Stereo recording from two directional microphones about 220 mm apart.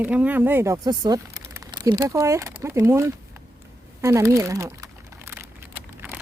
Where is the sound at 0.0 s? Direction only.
5° right (ahead or behind).